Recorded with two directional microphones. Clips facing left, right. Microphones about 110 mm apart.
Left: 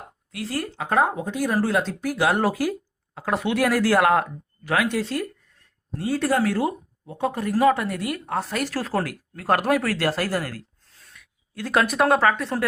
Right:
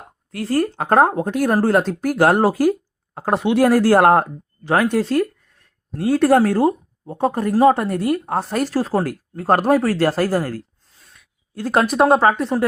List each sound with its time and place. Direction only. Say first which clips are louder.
0.3 s speech: right 9 dB; 45° right (ahead or behind)
2.4 s speech: right 7 dB; 35° right (ahead or behind)
8.7 s speech: right 6 dB; 25° right (ahead or behind)